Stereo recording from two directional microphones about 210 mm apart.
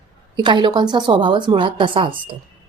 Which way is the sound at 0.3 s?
20° right (ahead or behind).